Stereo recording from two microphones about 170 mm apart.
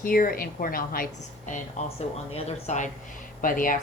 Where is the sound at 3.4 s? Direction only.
55° left (ahead or behind).